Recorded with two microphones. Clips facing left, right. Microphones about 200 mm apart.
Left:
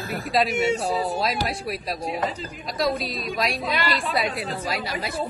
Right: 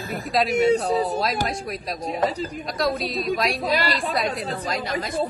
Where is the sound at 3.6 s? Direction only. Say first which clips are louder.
Right 3 dB; 45° right (ahead or behind).